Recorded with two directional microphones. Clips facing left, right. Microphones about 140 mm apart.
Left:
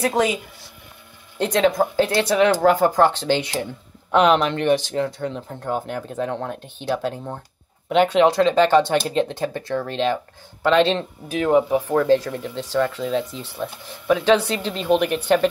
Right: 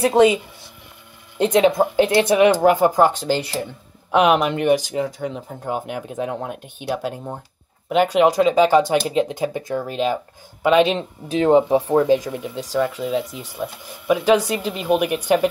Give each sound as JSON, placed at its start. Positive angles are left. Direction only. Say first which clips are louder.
{"t": 0.0, "sound": "speech", "louder": "right 6 dB", "side_deg": -20}
{"t": 1.4, "sound": "speech", "louder": "right 3 dB", "side_deg": -20}
{"t": 11.2, "sound": "speech", "louder": "right 3 dB", "side_deg": -25}